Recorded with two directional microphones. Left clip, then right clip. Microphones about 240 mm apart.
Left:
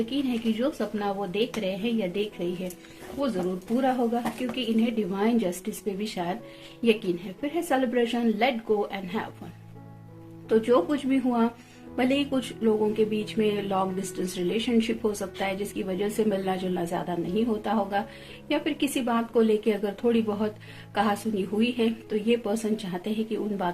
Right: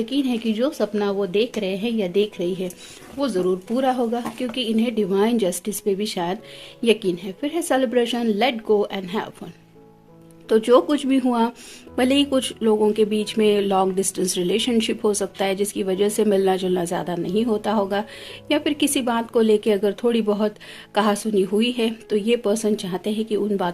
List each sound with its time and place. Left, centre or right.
0.0 s speech: right
10.5 s speech: right